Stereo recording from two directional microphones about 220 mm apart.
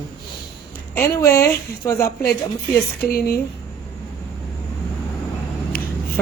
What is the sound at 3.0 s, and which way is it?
Speech, 45° left (ahead or behind).